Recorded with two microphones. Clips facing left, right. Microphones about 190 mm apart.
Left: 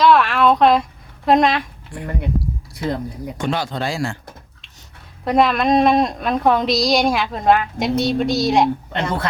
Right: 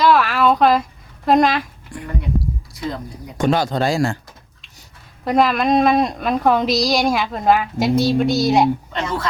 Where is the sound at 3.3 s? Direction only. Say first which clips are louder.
Right 6 dB; 40° right (ahead or behind).